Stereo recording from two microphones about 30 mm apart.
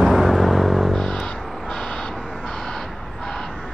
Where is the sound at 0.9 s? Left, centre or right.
Left.